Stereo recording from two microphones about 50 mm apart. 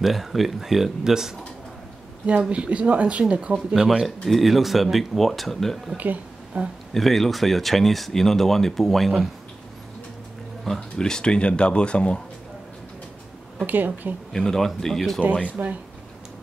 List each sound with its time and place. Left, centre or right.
0.0 s speech: centre
2.5 s speech: right
3.5 s speech: centre
4.3 s speech: centre
6.5 s speech: right
6.9 s speech: centre
10.8 s speech: centre
13.7 s speech: right
14.3 s speech: centre
15.6 s speech: right